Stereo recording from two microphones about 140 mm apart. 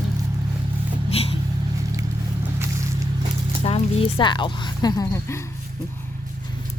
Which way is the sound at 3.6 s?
45° left (ahead or behind).